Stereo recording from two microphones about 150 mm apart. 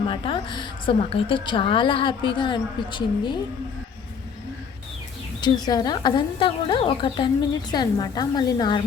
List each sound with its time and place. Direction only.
0.1 s a woman's voice: 35° left (ahead or behind)
5.6 s a woman's voice: 25° left (ahead or behind)